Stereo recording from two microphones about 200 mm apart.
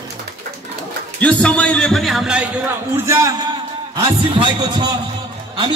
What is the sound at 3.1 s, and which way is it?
A man's voice, 15° right (ahead or behind).